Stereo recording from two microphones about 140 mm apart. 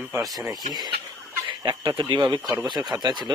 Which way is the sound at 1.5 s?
30° right (ahead or behind).